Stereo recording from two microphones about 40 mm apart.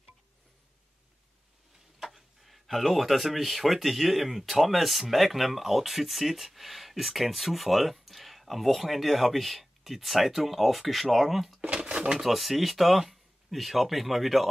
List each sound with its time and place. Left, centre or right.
2.0 s speech: centre
11.6 s drawer open or close: right
12.2 s speech: centre